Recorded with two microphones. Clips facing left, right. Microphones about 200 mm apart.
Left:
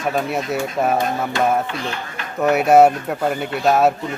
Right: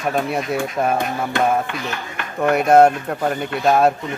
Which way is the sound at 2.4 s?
5° left (ahead or behind).